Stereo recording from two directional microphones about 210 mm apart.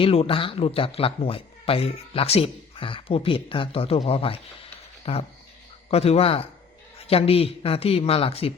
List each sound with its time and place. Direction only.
0.0 s speech: 25° left (ahead or behind)